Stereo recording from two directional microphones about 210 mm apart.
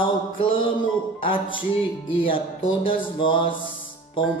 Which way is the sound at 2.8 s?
25° left (ahead or behind).